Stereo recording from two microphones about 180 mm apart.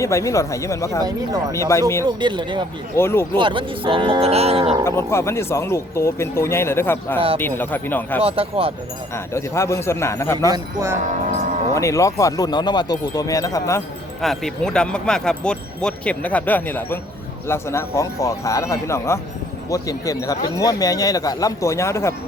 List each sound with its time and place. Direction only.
0.0 s speech: 15° left (ahead or behind)
2.0 s speech: 25° right (ahead or behind)
2.9 s speech: 15° left (ahead or behind)
3.3 s speech: 25° right (ahead or behind)
4.9 s speech: 15° left (ahead or behind)
8.2 s speech: 30° right (ahead or behind)
9.1 s speech: 15° left (ahead or behind)
10.5 s speech: 15° right (ahead or behind)
11.7 s speech: 15° left (ahead or behind)
14.2 s speech: centre (ahead or behind)